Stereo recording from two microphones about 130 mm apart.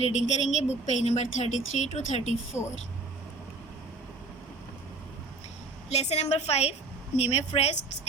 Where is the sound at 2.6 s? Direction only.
20° left (ahead or behind).